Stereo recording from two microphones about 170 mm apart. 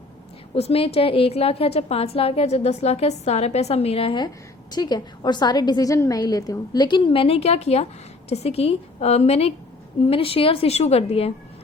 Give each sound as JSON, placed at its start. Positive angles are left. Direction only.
{"t": 0.5, "sound": "a woman's voice", "side_deg": 35}